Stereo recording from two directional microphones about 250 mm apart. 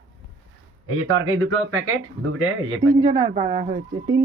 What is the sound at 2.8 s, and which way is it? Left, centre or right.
Speech, centre.